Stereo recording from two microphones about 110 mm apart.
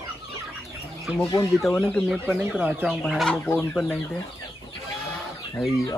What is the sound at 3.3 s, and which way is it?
Chicken, 20° left (ahead or behind).